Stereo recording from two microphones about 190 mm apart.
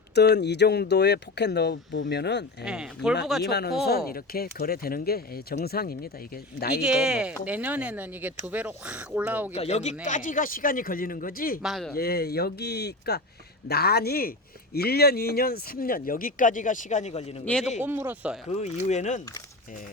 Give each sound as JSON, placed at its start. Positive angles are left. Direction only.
{"t": 0.1, "sound": "speech", "side_deg": 60}
{"t": 2.6, "sound": "speech", "side_deg": -5}
{"t": 3.5, "sound": "speech", "side_deg": 55}
{"t": 6.7, "sound": "speech", "side_deg": -5}
{"t": 9.5, "sound": "speech", "side_deg": 35}
{"t": 11.6, "sound": "speech", "side_deg": 0}
{"t": 11.9, "sound": "speech", "side_deg": 55}
{"t": 17.4, "sound": "speech", "side_deg": 5}
{"t": 17.7, "sound": "speech", "side_deg": -10}
{"t": 18.5, "sound": "speech", "side_deg": 35}